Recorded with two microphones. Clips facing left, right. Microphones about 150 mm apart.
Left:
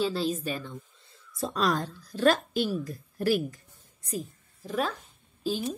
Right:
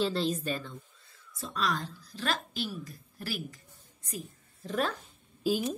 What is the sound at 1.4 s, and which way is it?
A woman's voice, 40° left (ahead or behind).